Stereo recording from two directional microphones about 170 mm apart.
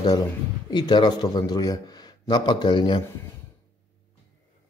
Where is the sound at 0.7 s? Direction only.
25° left (ahead or behind).